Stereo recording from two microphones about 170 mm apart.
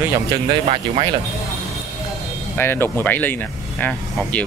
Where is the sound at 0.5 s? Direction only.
35° right (ahead or behind).